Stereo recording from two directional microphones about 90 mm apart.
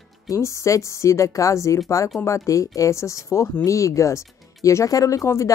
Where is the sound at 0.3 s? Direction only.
35° left (ahead or behind).